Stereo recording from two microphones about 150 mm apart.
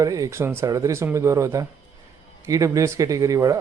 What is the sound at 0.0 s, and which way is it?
A man's voice, 20° right (ahead or behind).